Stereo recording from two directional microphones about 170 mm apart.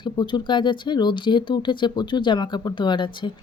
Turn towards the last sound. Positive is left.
turn(degrees=25)  # may be behind; listen again after turning